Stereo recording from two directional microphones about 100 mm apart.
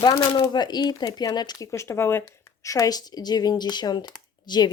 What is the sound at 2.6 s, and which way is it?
Speech, 35° left (ahead or behind).